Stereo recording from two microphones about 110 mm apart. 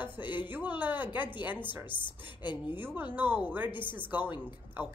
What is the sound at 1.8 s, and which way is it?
Speech, 45° left (ahead or behind).